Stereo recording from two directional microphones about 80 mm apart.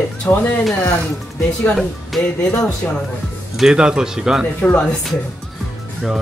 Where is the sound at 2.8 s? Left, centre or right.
Centre.